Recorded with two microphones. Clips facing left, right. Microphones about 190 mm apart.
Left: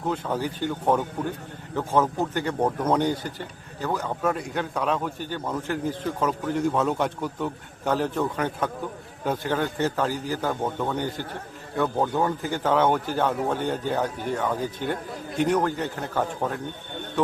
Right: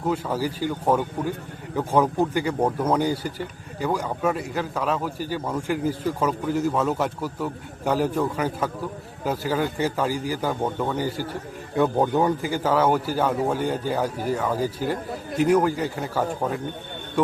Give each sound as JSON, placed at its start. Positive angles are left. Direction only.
{"t": 0.0, "sound": "speech", "side_deg": -5}